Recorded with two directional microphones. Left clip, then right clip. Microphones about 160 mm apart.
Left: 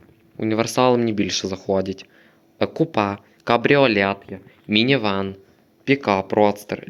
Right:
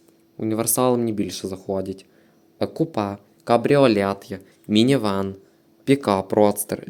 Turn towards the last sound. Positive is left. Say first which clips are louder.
# even
turn(degrees=-25)  # may be behind; listen again after turning